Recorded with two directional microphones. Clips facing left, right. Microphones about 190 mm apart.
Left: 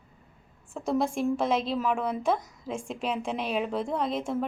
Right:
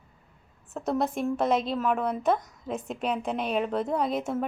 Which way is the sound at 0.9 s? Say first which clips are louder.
Left 1 dB; 5° right (ahead or behind).